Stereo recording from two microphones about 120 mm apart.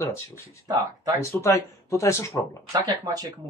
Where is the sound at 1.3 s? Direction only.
25° left (ahead or behind).